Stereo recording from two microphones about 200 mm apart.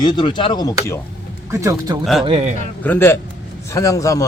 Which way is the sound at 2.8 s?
10° left (ahead or behind).